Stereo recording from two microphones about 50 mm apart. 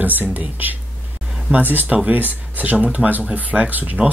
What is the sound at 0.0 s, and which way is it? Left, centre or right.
Speech, right.